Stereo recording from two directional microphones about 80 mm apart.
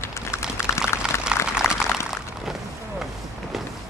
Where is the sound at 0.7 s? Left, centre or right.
Left.